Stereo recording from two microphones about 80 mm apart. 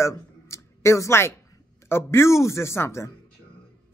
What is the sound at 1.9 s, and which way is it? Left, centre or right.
A woman's voice, left.